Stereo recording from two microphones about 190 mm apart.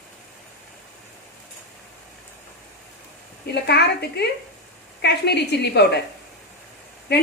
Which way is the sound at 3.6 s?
60° left (ahead or behind).